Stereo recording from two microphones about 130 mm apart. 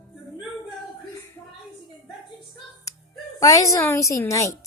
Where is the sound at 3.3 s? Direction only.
25° left (ahead or behind).